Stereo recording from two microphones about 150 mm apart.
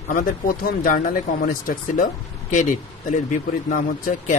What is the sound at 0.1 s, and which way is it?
Speech, 65° left (ahead or behind).